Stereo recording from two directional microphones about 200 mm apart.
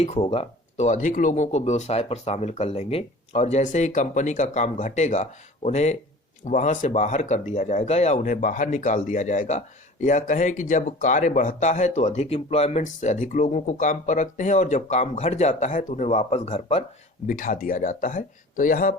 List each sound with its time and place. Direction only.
0.0 s speech: 30° left (ahead or behind)
17.2 s speech: 45° left (ahead or behind)